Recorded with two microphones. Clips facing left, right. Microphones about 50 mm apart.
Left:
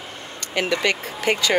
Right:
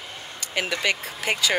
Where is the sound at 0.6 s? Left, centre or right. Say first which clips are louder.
Left 3 dB; centre.